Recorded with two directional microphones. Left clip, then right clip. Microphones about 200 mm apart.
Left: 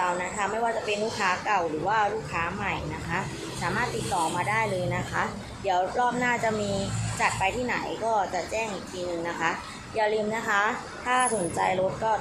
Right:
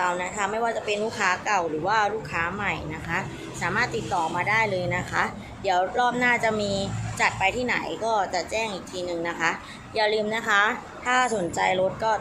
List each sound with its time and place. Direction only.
0.0 s a woman's voice: 15° right (ahead or behind)